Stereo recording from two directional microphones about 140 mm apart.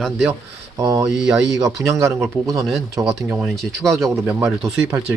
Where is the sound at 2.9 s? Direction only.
25° right (ahead or behind).